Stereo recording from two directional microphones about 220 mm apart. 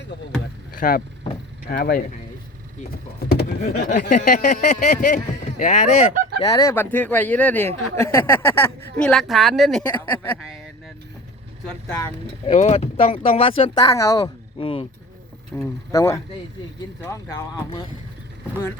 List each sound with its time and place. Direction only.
0.8 s speech: 40° left (ahead or behind)
3.8 s speech: 35° left (ahead or behind)
6.4 s speech: 15° left (ahead or behind)
12.5 s speech: 30° left (ahead or behind)
15.5 s speech: 15° left (ahead or behind)